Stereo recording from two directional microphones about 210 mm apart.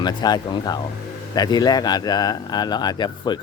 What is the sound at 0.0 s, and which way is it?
Speech, 20° left (ahead or behind).